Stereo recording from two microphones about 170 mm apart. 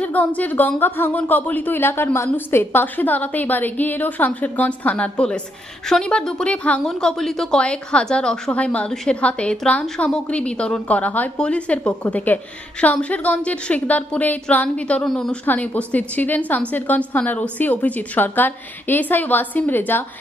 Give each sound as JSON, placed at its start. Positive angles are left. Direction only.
{"t": 0.0, "sound": "a woman's voice", "side_deg": 10}